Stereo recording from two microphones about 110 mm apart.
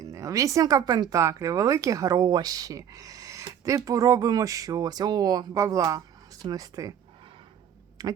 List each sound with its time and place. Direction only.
0.0 s speech: 30° right (ahead or behind)
8.0 s speech: 35° right (ahead or behind)